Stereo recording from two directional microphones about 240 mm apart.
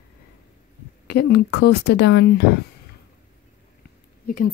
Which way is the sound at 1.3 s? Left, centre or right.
Left.